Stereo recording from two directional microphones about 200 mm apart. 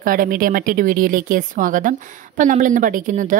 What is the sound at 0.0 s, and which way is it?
A woman's voice, 45° right (ahead or behind).